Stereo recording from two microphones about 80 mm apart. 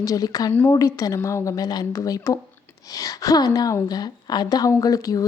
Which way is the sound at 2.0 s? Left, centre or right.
Left.